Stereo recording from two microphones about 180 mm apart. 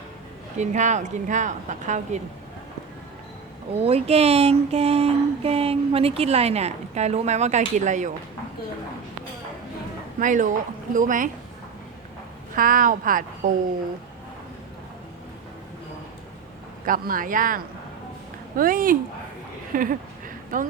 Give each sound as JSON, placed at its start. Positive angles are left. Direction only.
{"t": 0.5, "sound": "speech", "side_deg": -40}
{"t": 3.8, "sound": "speech", "side_deg": -35}
{"t": 10.2, "sound": "speech", "side_deg": -45}
{"t": 12.5, "sound": "speech", "side_deg": -50}
{"t": 16.8, "sound": "speech", "side_deg": -50}
{"t": 19.7, "sound": "a sound", "side_deg": -50}